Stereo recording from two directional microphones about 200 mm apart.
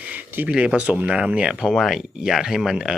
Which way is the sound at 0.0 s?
10° right (ahead or behind).